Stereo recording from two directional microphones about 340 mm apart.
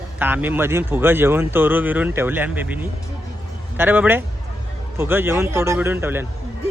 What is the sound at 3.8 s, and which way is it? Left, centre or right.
A man's voice, centre.